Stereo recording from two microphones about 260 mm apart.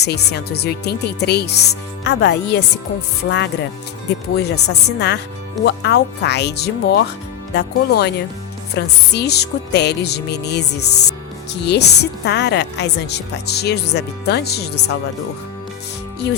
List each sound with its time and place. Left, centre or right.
0.0 s a woman's voice: left